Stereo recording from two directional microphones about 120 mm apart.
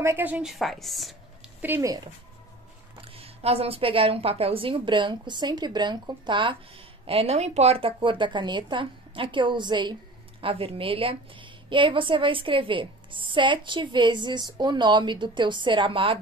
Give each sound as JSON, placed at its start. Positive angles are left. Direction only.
{"t": 0.0, "sound": "a woman's voice", "side_deg": -20}
{"t": 0.5, "sound": "a woman's voice", "side_deg": 0}
{"t": 1.6, "sound": "speech", "side_deg": -20}
{"t": 3.0, "sound": "a woman's voice", "side_deg": -50}
{"t": 7.1, "sound": "a woman's voice", "side_deg": -55}
{"t": 10.4, "sound": "a woman's voice", "side_deg": -50}